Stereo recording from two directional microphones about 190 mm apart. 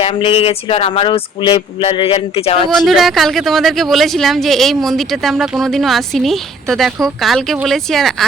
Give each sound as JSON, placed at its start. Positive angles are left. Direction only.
{"t": 0.0, "sound": "speech", "side_deg": 30}
{"t": 2.6, "sound": "speech", "side_deg": 0}